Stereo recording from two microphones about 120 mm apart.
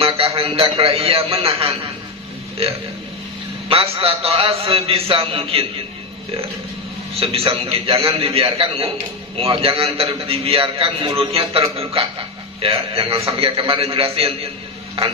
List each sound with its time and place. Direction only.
0.4 s a man's voice: 50° right (ahead or behind)
3.6 s a man's voice: 50° right (ahead or behind)
7.2 s a man's voice: 50° right (ahead or behind)